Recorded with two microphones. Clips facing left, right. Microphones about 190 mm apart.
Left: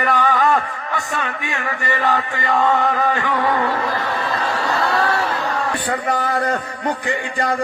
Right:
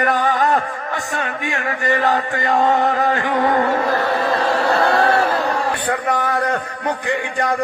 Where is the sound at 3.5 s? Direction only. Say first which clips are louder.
Right 3 dB; 45° right (ahead or behind).